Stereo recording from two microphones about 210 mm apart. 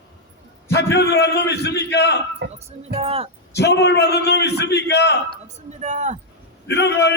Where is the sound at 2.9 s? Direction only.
25° right (ahead or behind).